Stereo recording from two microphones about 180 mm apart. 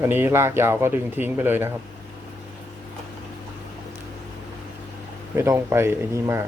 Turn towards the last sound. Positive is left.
turn(degrees=-15)  # may be behind; listen again after turning